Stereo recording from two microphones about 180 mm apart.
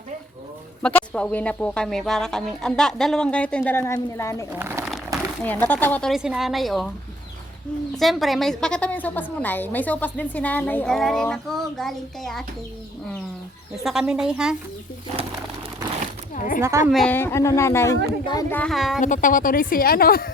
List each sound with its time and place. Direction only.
0.8 s speech: 5° left (ahead or behind)
4.5 s speech: 15° right (ahead or behind)
5.4 s a woman's voice: 10° left (ahead or behind)
7.9 s a woman's voice: centre (ahead or behind)
13.8 s a woman's voice: 5° right (ahead or behind)
16.3 s speech: 45° left (ahead or behind)
16.6 s a woman's voice: 15° right (ahead or behind)
16.9 s speech: 5° left (ahead or behind)
18.5 s a woman's voice: 5° left (ahead or behind)
19.0 s speech: 45° left (ahead or behind)